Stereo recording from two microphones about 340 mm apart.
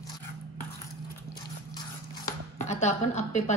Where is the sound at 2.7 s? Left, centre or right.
Centre.